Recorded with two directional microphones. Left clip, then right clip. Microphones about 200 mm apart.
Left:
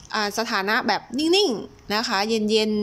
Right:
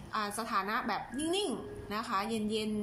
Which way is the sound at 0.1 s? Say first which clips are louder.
Left 10 dB; 40° left (ahead or behind).